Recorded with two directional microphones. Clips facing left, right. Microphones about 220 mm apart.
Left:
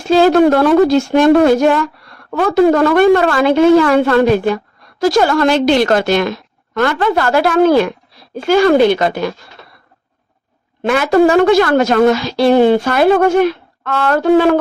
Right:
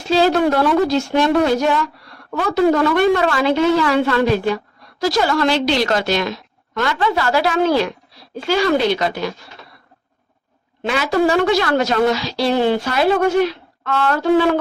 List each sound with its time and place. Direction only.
0.1 s a woman's voice: 50° left (ahead or behind)
10.8 s a woman's voice: 55° left (ahead or behind)